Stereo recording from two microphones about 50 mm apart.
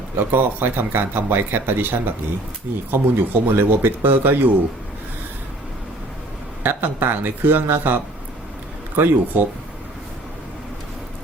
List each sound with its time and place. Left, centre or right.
0.2 s speech: right
6.6 s speech: right
9.0 s speech: right